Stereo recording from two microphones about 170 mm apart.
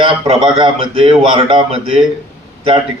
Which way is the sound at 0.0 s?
35° right (ahead or behind).